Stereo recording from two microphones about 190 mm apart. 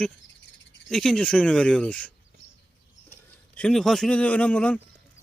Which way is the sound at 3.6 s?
5° left (ahead or behind).